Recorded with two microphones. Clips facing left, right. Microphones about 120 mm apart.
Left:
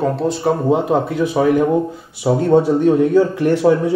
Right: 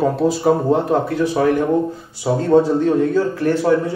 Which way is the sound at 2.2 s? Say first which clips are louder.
Left 1 dB; 15° left (ahead or behind).